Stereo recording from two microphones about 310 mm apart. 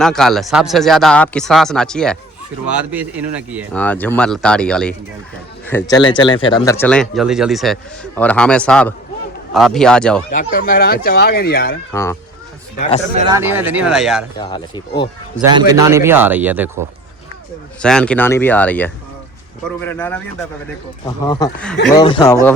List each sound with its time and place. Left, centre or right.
0.0 s speech: centre
10.3 s speech: left
11.9 s speech: centre
13.1 s speech: centre
14.3 s speech: centre
15.4 s a man's voice: centre
17.8 s speech: centre